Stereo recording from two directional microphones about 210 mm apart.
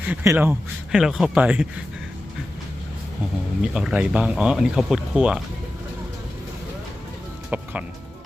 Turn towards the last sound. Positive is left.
turn(degrees=-5)  # may be behind; listen again after turning